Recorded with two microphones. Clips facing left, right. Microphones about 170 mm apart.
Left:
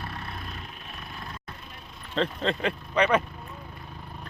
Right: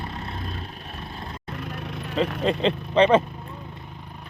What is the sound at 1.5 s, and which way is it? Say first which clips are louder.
Vehicle: right 13 dB; 75° right (ahead or behind).